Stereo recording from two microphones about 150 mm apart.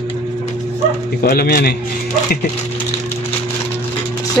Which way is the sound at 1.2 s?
90° left.